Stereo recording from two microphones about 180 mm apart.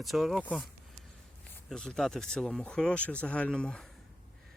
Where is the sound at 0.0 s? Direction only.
Centre (ahead or behind).